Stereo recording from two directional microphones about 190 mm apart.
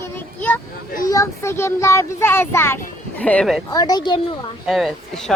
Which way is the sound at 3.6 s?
20° left (ahead or behind).